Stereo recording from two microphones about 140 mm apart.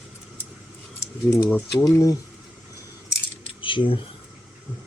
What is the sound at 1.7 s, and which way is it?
Speech, 25° left (ahead or behind).